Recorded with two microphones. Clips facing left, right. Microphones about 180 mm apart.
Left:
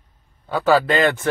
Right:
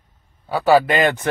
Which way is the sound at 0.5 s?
15° right (ahead or behind).